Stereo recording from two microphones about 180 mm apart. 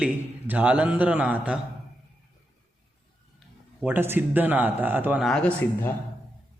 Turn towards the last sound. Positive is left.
turn(degrees=5)  # may be behind; listen again after turning